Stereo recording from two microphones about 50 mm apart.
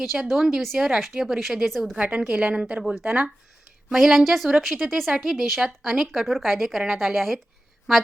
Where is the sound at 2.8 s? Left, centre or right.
Centre.